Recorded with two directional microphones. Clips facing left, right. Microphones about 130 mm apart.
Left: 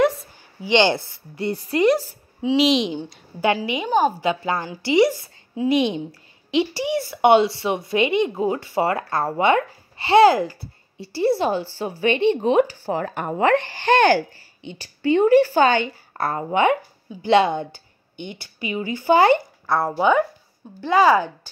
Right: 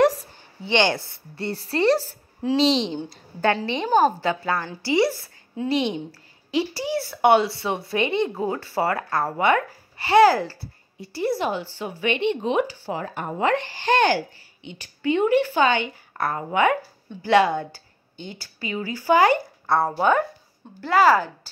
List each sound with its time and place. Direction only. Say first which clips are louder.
0.0 s a sound: even; centre (ahead or behind)
0.7 s speech: left 3 dB; 20° left (ahead or behind)
3.3 s a woman's voice: left 1 dB; 10° left (ahead or behind)
4.2 s a woman's voice: left 2 dB; 20° left (ahead or behind)
11.0 s a woman's voice: left 4 dB; 30° left (ahead or behind); by 14.2 s 55° left (ahead or behind)
14.6 s a woman's voice: left 4 dB; 35° left (ahead or behind)
20.0 s a woman's voice: left 2 dB; 15° left (ahead or behind)